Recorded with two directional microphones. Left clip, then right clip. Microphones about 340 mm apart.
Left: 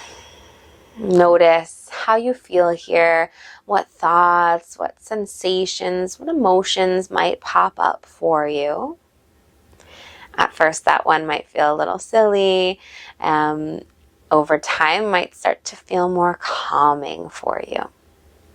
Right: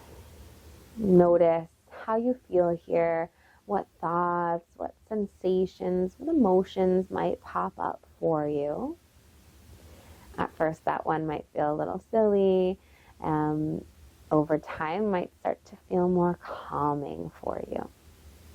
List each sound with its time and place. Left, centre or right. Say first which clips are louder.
1.2 s speech: left 11 dB; centre
6.1 s speech: left 9 dB; centre
6.6 s speech: left 8 dB; centre
10.3 s speech: left 12 dB; centre